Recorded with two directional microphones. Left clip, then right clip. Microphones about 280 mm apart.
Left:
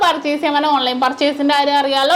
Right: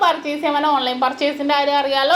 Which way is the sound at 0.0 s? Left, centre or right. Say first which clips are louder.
Left 2 dB; left.